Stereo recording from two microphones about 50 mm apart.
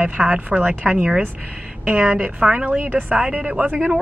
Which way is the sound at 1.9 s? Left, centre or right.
Right.